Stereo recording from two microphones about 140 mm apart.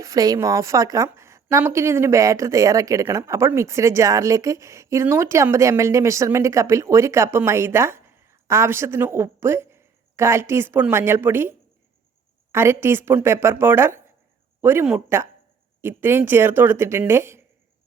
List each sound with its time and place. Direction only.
0.0 s a woman's voice: 25° right (ahead or behind)